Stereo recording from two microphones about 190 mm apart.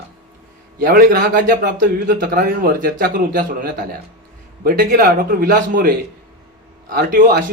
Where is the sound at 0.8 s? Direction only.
50° right (ahead or behind).